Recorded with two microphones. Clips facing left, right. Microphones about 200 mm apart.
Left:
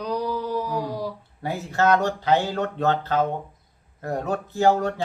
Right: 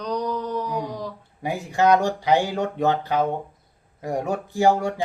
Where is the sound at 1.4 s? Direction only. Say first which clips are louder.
Right 2 dB; 15° right (ahead or behind).